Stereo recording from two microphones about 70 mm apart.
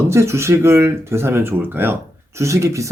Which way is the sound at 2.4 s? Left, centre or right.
Right.